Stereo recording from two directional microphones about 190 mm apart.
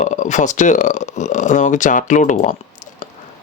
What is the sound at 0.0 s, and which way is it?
Speech, 40° left (ahead or behind).